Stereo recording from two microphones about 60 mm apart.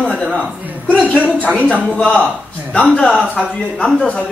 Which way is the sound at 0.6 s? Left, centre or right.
Right.